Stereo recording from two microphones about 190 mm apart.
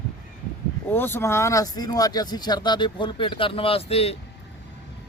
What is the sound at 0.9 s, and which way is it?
Speech, 10° left (ahead or behind).